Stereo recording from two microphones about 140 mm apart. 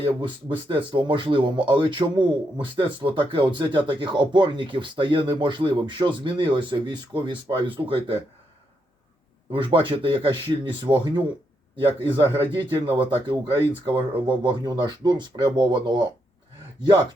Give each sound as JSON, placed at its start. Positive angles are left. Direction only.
{"t": 0.0, "sound": "a man's voice", "side_deg": -35}
{"t": 9.5, "sound": "a man's voice", "side_deg": -35}
{"t": 12.2, "sound": "speech", "side_deg": 15}
{"t": 12.5, "sound": "a man's voice", "side_deg": -35}